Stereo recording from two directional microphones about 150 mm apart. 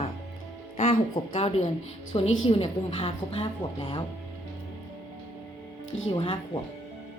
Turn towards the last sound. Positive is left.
turn(degrees=35)  # may be behind; listen again after turning